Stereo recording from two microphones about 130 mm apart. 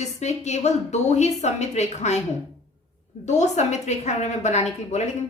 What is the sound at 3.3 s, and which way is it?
A woman's voice, 60° left (ahead or behind).